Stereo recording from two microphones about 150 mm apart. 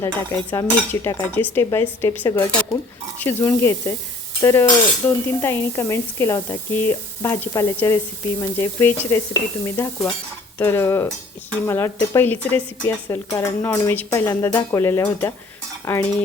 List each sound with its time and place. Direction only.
0.0 s a woman's voice: 20° left (ahead or behind)
1.0 s dishes: 15° left (ahead or behind)
4.4 s stir: 20° left (ahead or behind)
5.0 s a woman's voice: 15° left (ahead or behind)
8.4 s dishes: 20° left (ahead or behind)